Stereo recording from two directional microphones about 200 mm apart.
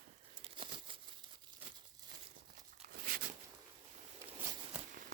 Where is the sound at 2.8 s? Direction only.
45° right (ahead or behind).